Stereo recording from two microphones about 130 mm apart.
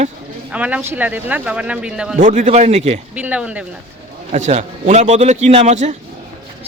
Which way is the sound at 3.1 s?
10° right (ahead or behind).